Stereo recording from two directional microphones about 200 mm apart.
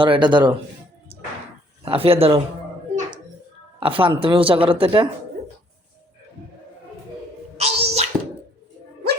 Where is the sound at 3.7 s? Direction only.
25° right (ahead or behind).